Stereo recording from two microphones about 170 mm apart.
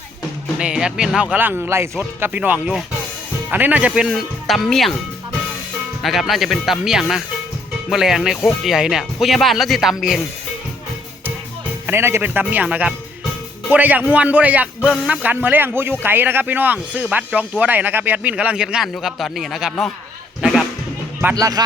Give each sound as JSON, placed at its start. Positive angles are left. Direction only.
{"t": 0.6, "sound": "a man's voice", "side_deg": -5}
{"t": 6.0, "sound": "speech", "side_deg": 0}
{"t": 11.9, "sound": "a man's voice", "side_deg": -15}
{"t": 21.2, "sound": "speech", "side_deg": -15}